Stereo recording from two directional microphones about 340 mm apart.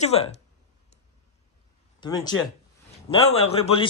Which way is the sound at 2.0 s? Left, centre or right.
Centre.